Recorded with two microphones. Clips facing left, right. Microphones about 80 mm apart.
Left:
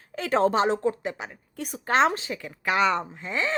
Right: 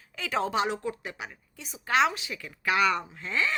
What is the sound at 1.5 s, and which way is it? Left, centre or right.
Speech, left.